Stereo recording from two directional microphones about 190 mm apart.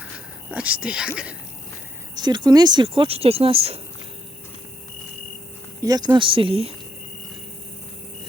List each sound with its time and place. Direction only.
0.5 s speech: 5° right (ahead or behind)
2.1 s speech: 20° right (ahead or behind)
5.8 s speech: 20° right (ahead or behind)